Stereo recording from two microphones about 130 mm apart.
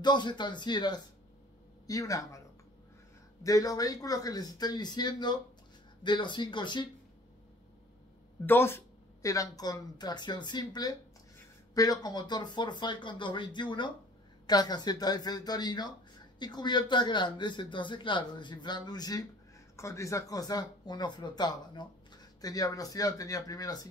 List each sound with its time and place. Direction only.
0.0 s a man's voice: 35° left (ahead or behind)
3.4 s a man's voice: 25° left (ahead or behind)
8.5 s a man's voice: 20° left (ahead or behind)